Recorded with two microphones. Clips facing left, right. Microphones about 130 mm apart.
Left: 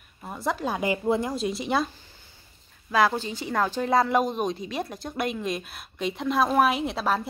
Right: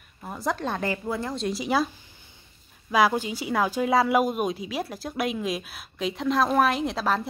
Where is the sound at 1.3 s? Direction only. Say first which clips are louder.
Right 1 dB; centre (ahead or behind).